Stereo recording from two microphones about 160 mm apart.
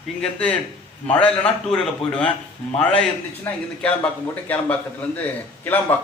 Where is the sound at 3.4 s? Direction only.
5° left (ahead or behind).